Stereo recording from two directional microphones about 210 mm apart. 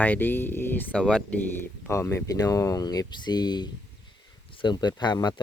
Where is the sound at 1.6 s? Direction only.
10° left (ahead or behind).